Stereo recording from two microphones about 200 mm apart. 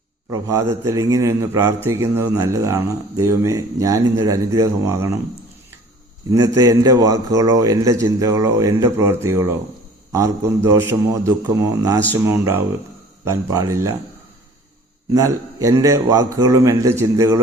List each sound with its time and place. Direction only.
0.3 s a man's voice: 15° right (ahead or behind)
6.3 s a man's voice: 15° right (ahead or behind)
15.1 s a man's voice: 15° right (ahead or behind)